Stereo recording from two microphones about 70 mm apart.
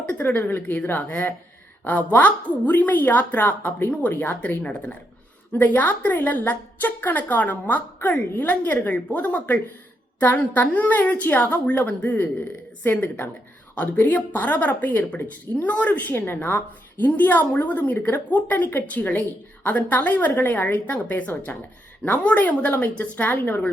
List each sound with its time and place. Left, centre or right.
0.0 s a woman's voice: left